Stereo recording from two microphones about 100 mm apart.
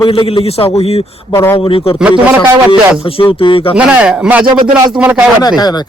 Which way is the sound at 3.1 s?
60° left (ahead or behind).